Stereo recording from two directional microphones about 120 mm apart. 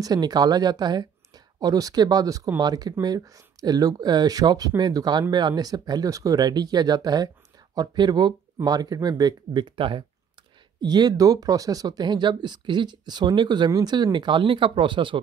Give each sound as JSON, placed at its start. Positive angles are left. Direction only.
{"t": 0.0, "sound": "speech", "side_deg": -35}
{"t": 10.8, "sound": "speech", "side_deg": -35}